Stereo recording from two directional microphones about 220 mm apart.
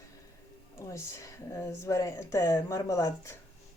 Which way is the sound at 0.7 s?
15° left (ahead or behind).